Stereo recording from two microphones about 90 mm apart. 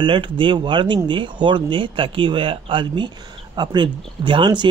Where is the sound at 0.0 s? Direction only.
70° right (ahead or behind).